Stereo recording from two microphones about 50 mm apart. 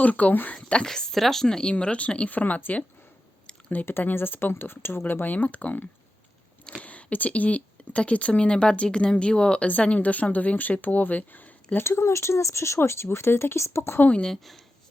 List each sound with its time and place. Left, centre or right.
0.0 s speech: left
0.5 s speech: left
0.9 s a woman's voice: centre
1.7 s speech: left
3.8 s speech: left
11.8 s speech: left
14.3 s speech: centre